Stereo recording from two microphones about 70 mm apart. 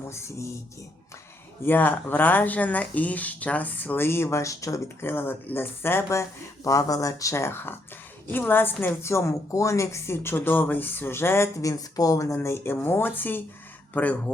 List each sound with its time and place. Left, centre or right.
0.0 s a woman's voice: left
1.6 s speech: left
4.9 s a woman's voice: left
6.7 s a woman's voice: left
11.6 s speech: left